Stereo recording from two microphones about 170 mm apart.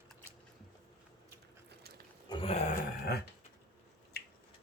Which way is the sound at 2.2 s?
30° left (ahead or behind).